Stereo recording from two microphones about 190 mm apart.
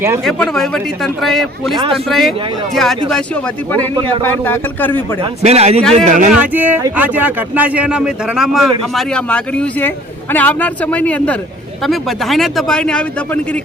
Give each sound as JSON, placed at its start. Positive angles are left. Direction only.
{"t": 0.3, "sound": "a man's voice", "side_deg": 0}
{"t": 5.2, "sound": "speech", "side_deg": -35}
{"t": 5.8, "sound": "speech", "side_deg": 5}
{"t": 6.1, "sound": "speech", "side_deg": -45}
{"t": 6.3, "sound": "a man's voice", "side_deg": -10}